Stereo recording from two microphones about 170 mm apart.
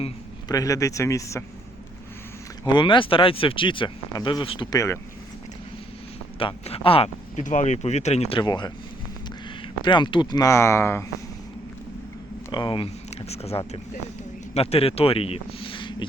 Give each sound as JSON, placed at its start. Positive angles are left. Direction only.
{"t": 0.4, "sound": "speech", "side_deg": 20}
{"t": 2.6, "sound": "speech", "side_deg": 30}
{"t": 6.4, "sound": "speech", "side_deg": 35}
{"t": 8.4, "sound": "speech", "side_deg": 25}
{"t": 9.8, "sound": "speech", "side_deg": 30}
{"t": 12.5, "sound": "speech", "side_deg": 25}